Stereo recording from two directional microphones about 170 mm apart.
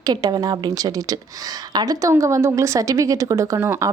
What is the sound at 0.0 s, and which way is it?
A woman's voice, 25° right (ahead or behind).